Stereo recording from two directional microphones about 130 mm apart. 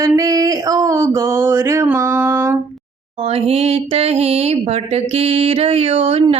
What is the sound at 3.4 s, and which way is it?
Mantra, 50° right (ahead or behind).